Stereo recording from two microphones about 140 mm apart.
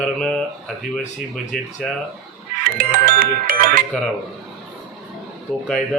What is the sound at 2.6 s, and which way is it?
Music, 90° right.